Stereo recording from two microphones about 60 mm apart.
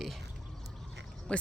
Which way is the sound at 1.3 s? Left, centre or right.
Centre.